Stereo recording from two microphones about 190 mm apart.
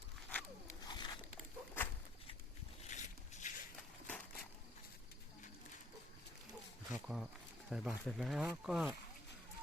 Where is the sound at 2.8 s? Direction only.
40° left (ahead or behind).